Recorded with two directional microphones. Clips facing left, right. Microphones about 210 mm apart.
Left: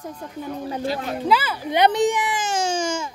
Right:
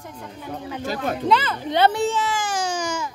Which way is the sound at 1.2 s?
5° left (ahead or behind).